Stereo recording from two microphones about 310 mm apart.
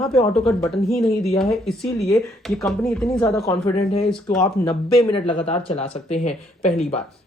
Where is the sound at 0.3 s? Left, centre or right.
Centre.